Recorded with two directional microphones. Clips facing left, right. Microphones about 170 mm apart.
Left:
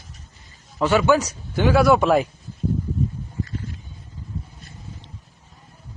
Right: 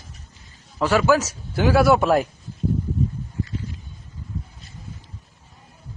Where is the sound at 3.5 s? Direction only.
50° left (ahead or behind).